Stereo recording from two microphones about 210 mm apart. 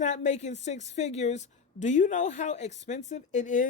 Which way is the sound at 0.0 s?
35° left (ahead or behind).